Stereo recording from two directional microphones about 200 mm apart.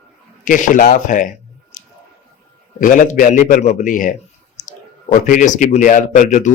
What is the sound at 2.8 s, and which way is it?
A man's voice, 40° left (ahead or behind).